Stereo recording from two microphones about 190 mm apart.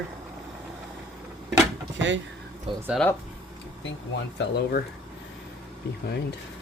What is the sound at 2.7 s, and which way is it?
Speech, 30° right (ahead or behind).